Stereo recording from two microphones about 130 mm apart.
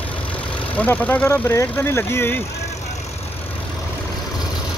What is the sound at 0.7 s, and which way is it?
Speech, 10° left (ahead or behind).